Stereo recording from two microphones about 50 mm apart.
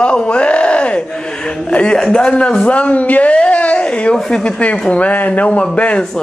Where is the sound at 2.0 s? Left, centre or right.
Centre; by 3.3 s left.